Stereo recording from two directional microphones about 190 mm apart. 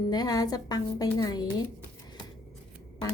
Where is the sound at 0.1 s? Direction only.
20° left (ahead or behind).